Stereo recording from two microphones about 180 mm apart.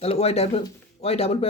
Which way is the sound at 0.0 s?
35° left (ahead or behind).